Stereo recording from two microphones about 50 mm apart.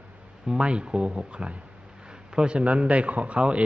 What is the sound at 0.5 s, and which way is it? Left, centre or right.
Speech, right.